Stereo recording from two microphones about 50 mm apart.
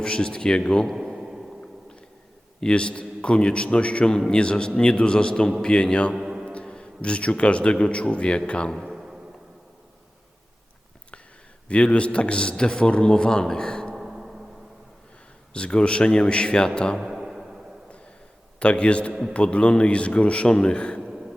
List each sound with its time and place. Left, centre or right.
0.0 s speech: centre
1.2 s a sound: centre
2.6 s speech: centre
6.1 s music: centre
6.4 s a man's voice: left
8.8 s a sound: centre
11.7 s speech: left
13.9 s a sound: centre
15.5 s speech: left
17.0 s music: centre
18.6 s speech: left